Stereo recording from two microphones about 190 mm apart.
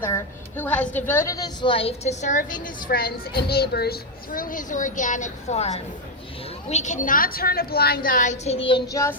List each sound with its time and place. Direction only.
0.0 s a woman's voice: 10° left (ahead or behind)